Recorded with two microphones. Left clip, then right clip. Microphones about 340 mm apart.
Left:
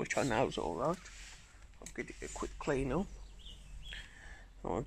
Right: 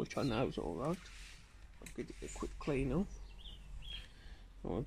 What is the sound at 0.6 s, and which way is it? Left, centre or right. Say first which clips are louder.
Speech: left 5 dB; left.